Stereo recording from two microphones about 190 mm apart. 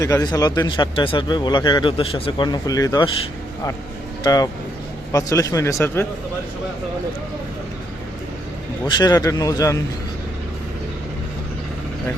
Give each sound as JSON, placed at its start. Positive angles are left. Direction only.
{"t": 0.0, "sound": "a man's voice", "side_deg": 20}
{"t": 4.2, "sound": "speech", "side_deg": 20}
{"t": 9.0, "sound": "speech", "side_deg": 20}